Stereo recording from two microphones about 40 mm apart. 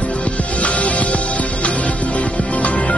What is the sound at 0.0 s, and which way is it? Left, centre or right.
Music, left.